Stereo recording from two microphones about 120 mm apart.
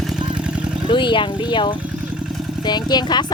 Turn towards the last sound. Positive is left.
turn(degrees=35)  # may be behind; listen again after turning